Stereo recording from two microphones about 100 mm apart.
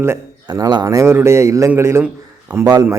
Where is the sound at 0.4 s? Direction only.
40° right (ahead or behind); by 2.0 s 25° right (ahead or behind).